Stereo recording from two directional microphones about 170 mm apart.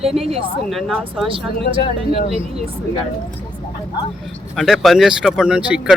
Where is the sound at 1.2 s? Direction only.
30° right (ahead or behind).